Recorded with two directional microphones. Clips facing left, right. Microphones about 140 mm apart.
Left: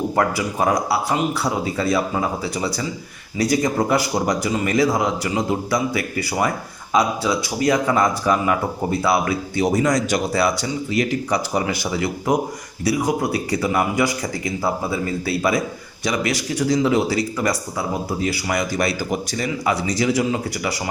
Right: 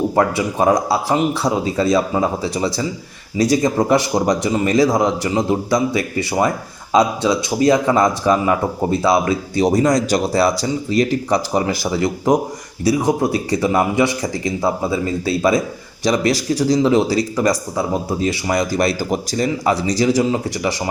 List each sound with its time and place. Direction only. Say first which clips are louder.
0.2 s speech: right 3 dB; 25° right (ahead or behind)
9.7 s speech: right 3 dB; 40° right (ahead or behind)
12.8 s speech: right 4 dB; 25° right (ahead or behind)
18.7 s speech: right 4 dB; 40° right (ahead or behind)